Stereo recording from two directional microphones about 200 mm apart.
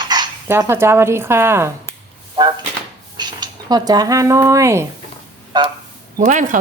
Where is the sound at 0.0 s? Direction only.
20° right (ahead or behind).